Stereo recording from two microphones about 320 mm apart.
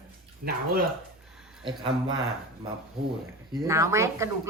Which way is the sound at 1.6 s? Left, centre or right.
Centre.